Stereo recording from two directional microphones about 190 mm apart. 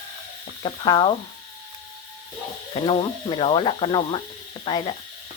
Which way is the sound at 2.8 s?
30° left (ahead or behind).